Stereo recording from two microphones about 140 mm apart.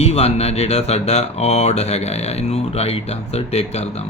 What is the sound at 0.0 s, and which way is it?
Speech, 50° left (ahead or behind).